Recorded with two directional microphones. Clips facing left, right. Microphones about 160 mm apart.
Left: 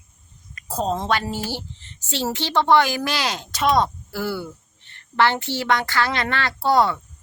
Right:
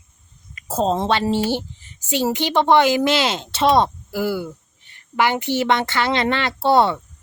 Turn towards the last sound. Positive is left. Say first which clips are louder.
# right 3 dB
turn(degrees=-25)  # may be behind; listen again after turning